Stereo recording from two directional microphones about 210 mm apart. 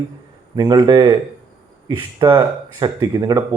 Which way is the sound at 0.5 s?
20° right (ahead or behind).